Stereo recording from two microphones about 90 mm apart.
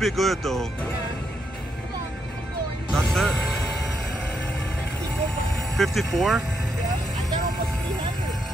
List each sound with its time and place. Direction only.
0.0 s speech: centre (ahead or behind)
2.9 s speech: 5° left (ahead or behind)
5.8 s speech: centre (ahead or behind)